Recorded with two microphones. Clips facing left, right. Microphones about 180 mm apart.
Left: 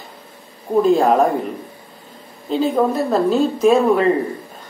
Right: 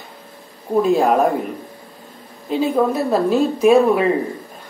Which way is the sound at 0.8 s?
5° right (ahead or behind).